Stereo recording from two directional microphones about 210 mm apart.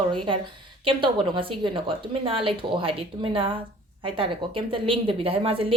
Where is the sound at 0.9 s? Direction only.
25° right (ahead or behind).